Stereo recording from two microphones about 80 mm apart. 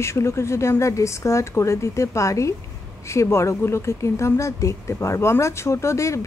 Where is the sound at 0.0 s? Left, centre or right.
Left.